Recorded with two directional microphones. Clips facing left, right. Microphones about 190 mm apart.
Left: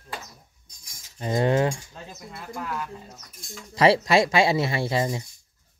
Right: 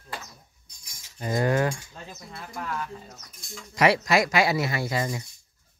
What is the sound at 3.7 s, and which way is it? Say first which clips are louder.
Speech: left 3 dB; 30° left (ahead or behind).